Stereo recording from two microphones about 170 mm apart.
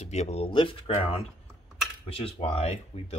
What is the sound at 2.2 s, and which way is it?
Speech, 40° left (ahead or behind).